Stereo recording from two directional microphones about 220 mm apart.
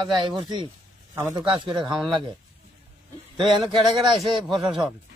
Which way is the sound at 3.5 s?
20° right (ahead or behind).